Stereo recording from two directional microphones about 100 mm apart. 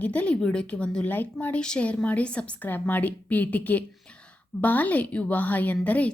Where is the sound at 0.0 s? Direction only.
15° left (ahead or behind).